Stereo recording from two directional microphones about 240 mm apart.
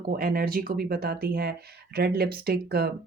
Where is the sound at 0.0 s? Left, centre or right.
Right.